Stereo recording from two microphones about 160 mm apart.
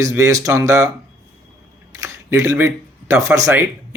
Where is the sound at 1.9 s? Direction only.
20° right (ahead or behind).